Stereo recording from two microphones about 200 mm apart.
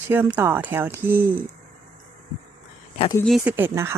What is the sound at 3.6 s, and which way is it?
Speech, 10° right (ahead or behind).